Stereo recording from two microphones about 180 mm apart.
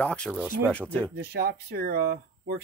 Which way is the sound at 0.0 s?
5° left (ahead or behind).